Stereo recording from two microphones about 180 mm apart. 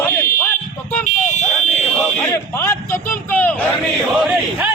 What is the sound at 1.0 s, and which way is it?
Buzzer, 40° left (ahead or behind).